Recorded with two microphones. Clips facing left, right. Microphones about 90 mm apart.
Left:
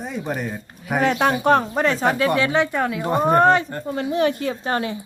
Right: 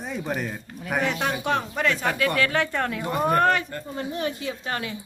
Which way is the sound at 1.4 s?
40° left (ahead or behind).